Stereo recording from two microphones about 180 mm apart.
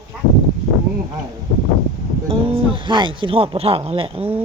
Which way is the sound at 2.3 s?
30° right (ahead or behind).